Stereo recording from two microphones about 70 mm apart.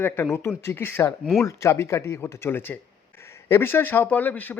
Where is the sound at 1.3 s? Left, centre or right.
Left.